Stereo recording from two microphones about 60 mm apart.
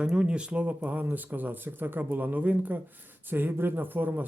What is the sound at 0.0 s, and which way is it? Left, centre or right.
Speech, centre.